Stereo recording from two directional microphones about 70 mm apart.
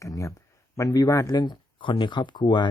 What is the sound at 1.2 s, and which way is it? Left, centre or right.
Speech, left.